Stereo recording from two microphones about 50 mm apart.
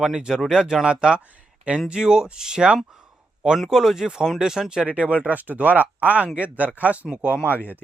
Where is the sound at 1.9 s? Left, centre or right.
Centre.